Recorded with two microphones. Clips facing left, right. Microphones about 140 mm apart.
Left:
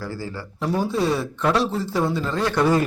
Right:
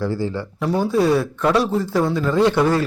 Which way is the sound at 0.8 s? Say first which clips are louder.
Right 6 dB; centre (ahead or behind).